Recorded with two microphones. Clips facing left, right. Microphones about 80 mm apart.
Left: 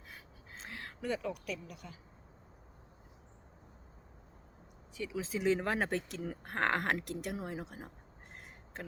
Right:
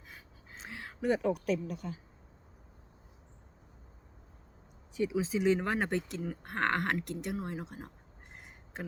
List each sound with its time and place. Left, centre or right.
0.1 s a sound: centre
1.2 s speech: right
5.1 s speech: centre